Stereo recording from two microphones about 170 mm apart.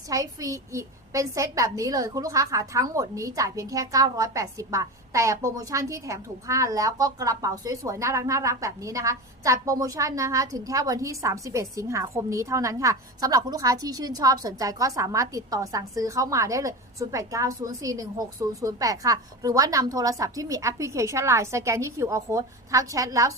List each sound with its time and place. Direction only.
0.1 s a woman's voice: 20° right (ahead or behind)